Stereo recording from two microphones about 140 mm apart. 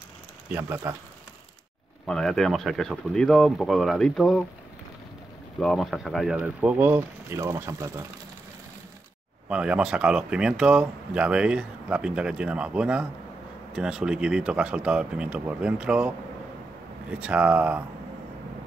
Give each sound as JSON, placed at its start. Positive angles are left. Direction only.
{"t": 0.5, "sound": "speech", "side_deg": -15}
{"t": 2.0, "sound": "speech", "side_deg": 5}
{"t": 5.6, "sound": "speech", "side_deg": 0}
{"t": 6.3, "sound": "speech", "side_deg": -10}
{"t": 9.5, "sound": "speech", "side_deg": -5}
{"t": 17.1, "sound": "speech", "side_deg": -10}